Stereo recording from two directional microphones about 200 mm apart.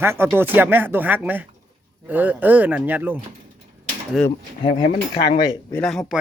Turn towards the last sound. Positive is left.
turn(degrees=0)  # may be behind; listen again after turning